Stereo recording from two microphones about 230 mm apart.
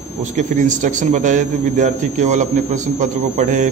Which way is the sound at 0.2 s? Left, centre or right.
Right.